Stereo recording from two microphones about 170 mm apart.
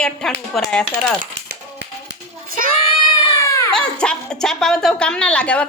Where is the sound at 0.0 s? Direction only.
5° left (ahead or behind).